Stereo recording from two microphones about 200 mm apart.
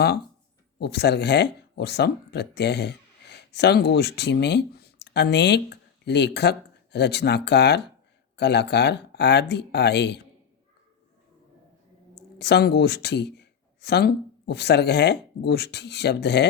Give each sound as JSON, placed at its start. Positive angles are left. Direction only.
{"t": 0.8, "sound": "speech", "side_deg": 55}
{"t": 12.4, "sound": "speech", "side_deg": 55}